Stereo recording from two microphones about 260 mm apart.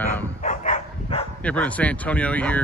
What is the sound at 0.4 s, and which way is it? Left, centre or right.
Dog, left.